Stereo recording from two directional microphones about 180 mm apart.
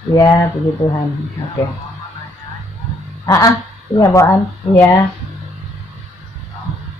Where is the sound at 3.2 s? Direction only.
20° left (ahead or behind).